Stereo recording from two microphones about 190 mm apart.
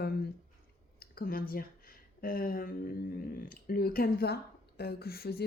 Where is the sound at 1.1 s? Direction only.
50° left (ahead or behind).